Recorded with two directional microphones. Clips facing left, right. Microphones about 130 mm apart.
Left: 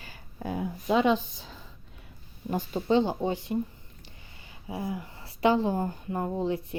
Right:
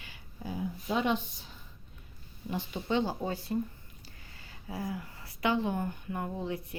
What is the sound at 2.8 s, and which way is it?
Speech, 25° left (ahead or behind).